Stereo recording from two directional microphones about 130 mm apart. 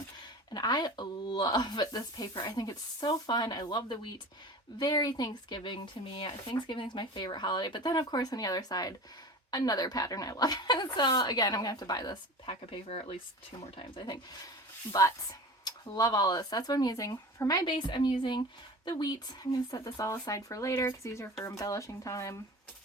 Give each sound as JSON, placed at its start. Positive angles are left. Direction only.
{"t": 0.5, "sound": "speech", "side_deg": 30}
{"t": 12.7, "sound": "speech", "side_deg": 50}
{"t": 13.7, "sound": "speech", "side_deg": 35}
{"t": 15.6, "sound": "speech", "side_deg": 30}